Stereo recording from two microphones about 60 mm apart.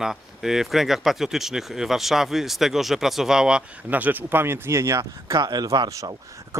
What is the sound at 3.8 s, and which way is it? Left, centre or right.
Speech, right.